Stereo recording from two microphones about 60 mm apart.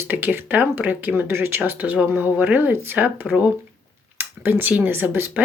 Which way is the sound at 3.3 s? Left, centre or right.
Centre.